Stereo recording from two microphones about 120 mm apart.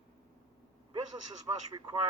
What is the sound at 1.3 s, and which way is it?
Speech, 35° right (ahead or behind).